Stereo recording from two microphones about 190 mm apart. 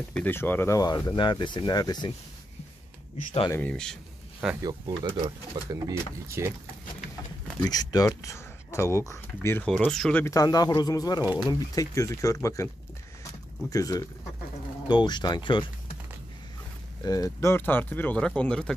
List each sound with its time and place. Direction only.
0.1 s speech: 10° left (ahead or behind)
3.4 s speech: 10° left (ahead or behind)
4.6 s speech: 25° right (ahead or behind)
7.6 s speech: 20° left (ahead or behind); by 10.2 s 5° left (ahead or behind)
10.2 s speech: 20° left (ahead or behind)
13.2 s a sound: 20° left (ahead or behind)
14.9 s speech: 25° left (ahead or behind)
17.0 s speech: 20° left (ahead or behind)